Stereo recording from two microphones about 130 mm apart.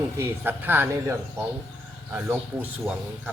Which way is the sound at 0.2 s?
15° right (ahead or behind).